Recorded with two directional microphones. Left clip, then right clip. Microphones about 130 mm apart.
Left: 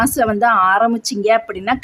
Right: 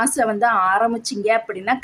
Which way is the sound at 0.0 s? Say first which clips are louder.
Left 3 dB; 50° left (ahead or behind).